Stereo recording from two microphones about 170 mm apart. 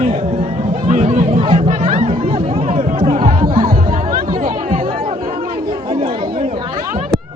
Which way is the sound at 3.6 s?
60° right (ahead or behind).